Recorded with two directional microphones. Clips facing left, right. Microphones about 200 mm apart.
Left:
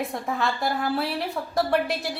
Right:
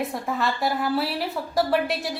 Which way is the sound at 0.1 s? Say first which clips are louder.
Right 1 dB; centre (ahead or behind).